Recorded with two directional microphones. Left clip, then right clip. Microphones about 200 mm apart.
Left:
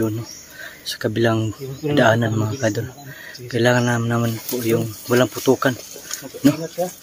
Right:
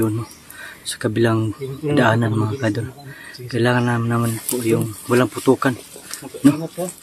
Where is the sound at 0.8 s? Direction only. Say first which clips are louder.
Even; 10° right (ahead or behind).